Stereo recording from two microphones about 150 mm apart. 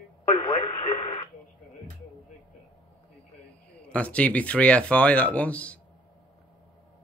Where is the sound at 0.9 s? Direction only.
35° left (ahead or behind).